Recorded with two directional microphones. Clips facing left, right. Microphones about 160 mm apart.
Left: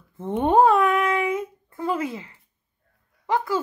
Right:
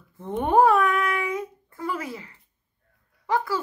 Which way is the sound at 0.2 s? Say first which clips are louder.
Left 2 dB; 25° left (ahead or behind).